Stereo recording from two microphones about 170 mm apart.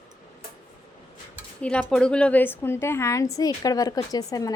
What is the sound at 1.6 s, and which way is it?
A woman's voice, 5° left (ahead or behind).